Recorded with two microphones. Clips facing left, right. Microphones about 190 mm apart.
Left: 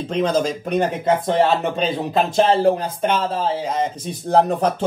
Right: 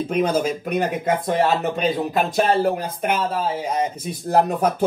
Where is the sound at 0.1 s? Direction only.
10° right (ahead or behind).